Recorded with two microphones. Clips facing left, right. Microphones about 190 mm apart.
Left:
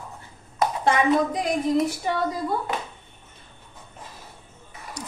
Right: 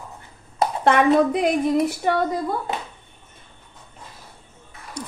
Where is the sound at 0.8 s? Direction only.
65° right (ahead or behind).